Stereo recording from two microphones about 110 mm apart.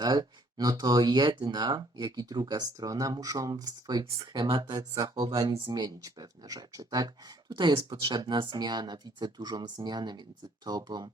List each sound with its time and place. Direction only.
0.0 s speech: 40° right (ahead or behind)